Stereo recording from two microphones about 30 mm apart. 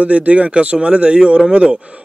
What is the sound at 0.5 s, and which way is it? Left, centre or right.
Speech, right.